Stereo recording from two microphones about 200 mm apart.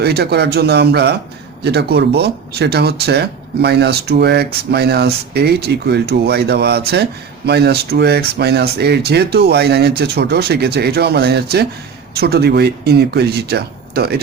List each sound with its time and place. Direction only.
0.0 s speech: 55° right (ahead or behind)